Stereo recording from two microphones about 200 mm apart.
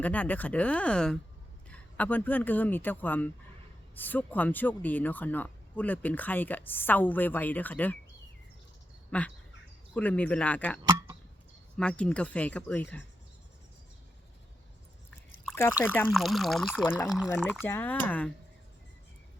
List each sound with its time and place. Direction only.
0.0 s speech: 5° left (ahead or behind)
9.0 s bird: 5° left (ahead or behind)
9.9 s speech: 10° left (ahead or behind)
10.8 s a sound: 15° right (ahead or behind)
11.8 s speech: 5° left (ahead or behind)
15.8 s speech: 10° left (ahead or behind)